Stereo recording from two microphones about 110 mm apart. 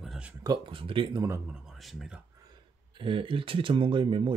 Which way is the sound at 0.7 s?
50° right (ahead or behind).